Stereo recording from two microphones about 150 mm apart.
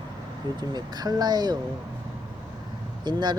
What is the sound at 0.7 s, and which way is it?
Speech, 25° right (ahead or behind).